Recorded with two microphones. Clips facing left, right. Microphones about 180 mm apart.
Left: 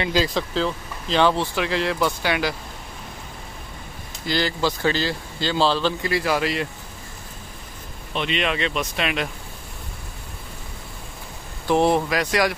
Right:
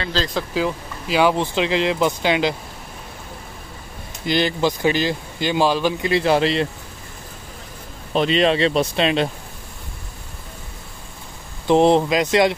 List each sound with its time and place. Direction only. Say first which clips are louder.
0.0 s speech: left 2 dB; 15° left (ahead or behind)
0.3 s speech: right 2 dB; centre (ahead or behind); by 2.5 s 20° right (ahead or behind)
4.3 s speech: right 4 dB; 20° right (ahead or behind)
6.1 s speech: right 8 dB; 25° right (ahead or behind)
8.1 s speech: right 7 dB; 35° right (ahead or behind)
11.6 s speech: right 4 dB; 20° right (ahead or behind)